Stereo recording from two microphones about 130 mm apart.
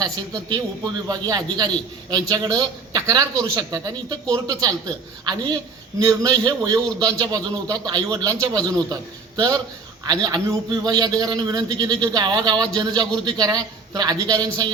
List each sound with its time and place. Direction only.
0.0 s a man's voice: 30° right (ahead or behind)